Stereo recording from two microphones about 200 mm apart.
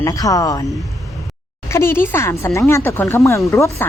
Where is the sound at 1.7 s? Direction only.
10° left (ahead or behind).